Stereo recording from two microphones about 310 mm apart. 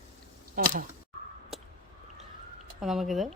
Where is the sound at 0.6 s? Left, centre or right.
Right.